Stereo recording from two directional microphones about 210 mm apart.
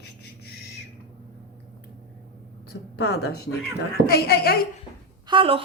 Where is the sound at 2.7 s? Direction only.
55° left (ahead or behind).